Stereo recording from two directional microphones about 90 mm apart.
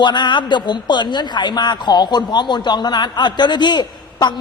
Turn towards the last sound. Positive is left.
turn(degrees=55)  # may be behind; listen again after turning